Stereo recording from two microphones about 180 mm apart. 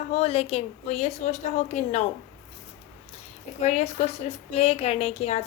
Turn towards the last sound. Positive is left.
turn(degrees=35)  # may be behind; listen again after turning